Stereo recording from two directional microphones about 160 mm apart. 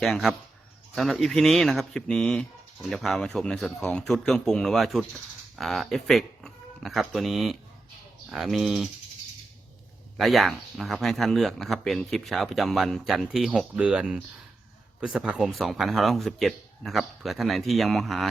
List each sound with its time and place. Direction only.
0.0 s speech: centre (ahead or behind)
10.2 s speech: centre (ahead or behind)